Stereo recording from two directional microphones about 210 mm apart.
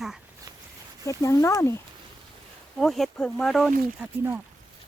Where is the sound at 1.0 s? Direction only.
15° left (ahead or behind).